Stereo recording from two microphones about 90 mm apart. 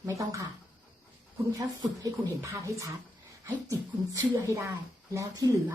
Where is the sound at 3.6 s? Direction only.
40° right (ahead or behind).